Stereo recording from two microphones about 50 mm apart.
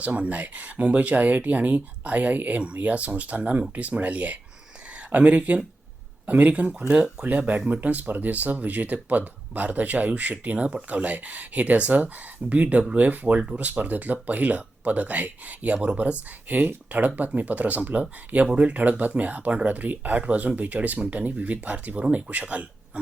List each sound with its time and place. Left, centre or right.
0.0 s speech: right